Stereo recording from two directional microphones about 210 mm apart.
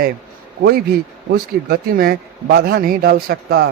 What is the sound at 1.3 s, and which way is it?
A man's voice, 45° right (ahead or behind).